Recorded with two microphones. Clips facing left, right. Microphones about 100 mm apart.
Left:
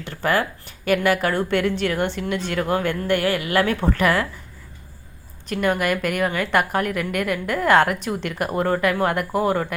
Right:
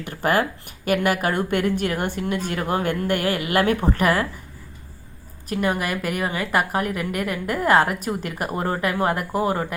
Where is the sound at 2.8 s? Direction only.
45° right (ahead or behind).